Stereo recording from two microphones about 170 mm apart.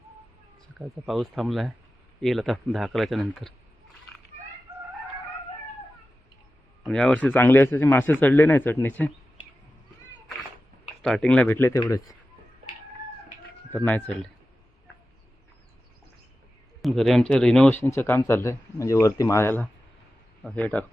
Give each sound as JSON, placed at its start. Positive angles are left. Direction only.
{"t": 0.8, "sound": "speech", "side_deg": 0}
{"t": 6.8, "sound": "speech", "side_deg": 5}
{"t": 11.0, "sound": "speech", "side_deg": 5}
{"t": 13.7, "sound": "speech", "side_deg": 10}
{"t": 16.8, "sound": "speech", "side_deg": 0}